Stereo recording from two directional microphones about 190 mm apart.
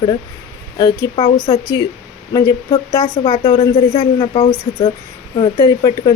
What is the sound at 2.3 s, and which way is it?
Speech, 20° left (ahead or behind).